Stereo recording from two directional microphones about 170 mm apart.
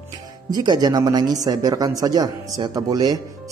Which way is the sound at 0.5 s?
25° right (ahead or behind).